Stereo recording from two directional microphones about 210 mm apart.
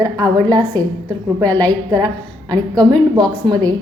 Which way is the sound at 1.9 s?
20° right (ahead or behind).